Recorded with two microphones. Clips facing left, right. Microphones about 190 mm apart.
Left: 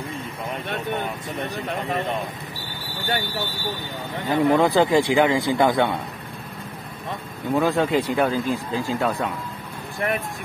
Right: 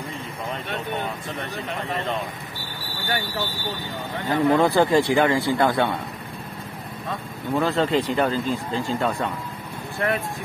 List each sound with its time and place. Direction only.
4.3 s speech: 15° left (ahead or behind)
7.5 s speech: 10° left (ahead or behind)
9.9 s speech: 15° left (ahead or behind)